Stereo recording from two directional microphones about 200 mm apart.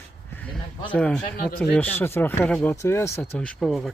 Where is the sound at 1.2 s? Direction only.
45° left (ahead or behind).